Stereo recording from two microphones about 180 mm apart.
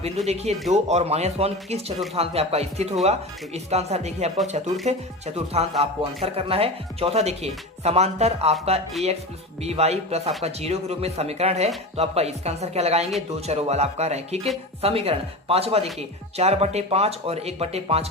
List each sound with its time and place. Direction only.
0.3 s speech: 35° right (ahead or behind)
9.6 s speech: 35° right (ahead or behind)